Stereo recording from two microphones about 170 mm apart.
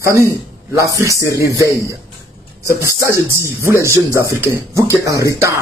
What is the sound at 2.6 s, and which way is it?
A man's voice, 15° right (ahead or behind).